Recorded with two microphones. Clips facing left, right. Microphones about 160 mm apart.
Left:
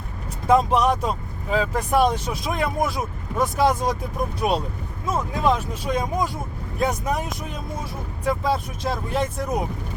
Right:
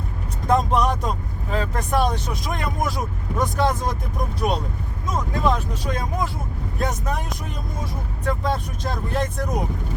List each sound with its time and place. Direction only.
0.4 s speech: 10° left (ahead or behind)